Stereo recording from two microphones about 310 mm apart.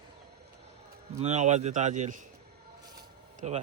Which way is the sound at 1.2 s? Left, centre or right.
Right.